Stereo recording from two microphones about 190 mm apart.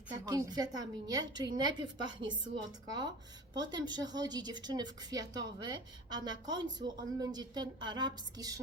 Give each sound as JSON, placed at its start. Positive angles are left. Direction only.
{"t": 0.1, "sound": "a woman's voice", "side_deg": -20}
{"t": 3.5, "sound": "a woman's voice", "side_deg": -20}